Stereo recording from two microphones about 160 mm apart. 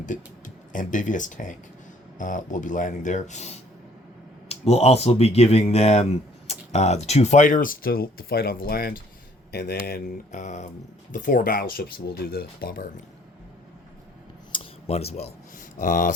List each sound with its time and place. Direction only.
0.0 s speech: 55° left (ahead or behind); by 9.0 s 70° left (ahead or behind)
9.5 s speech: 85° left; by 10.4 s 70° left (ahead or behind)
10.4 s speech: 45° left (ahead or behind); by 12.9 s 65° left (ahead or behind)
14.5 s a sound: 40° left (ahead or behind)
15.5 s speech: 55° left (ahead or behind)